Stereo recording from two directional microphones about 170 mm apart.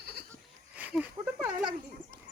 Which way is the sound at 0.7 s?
10° right (ahead or behind).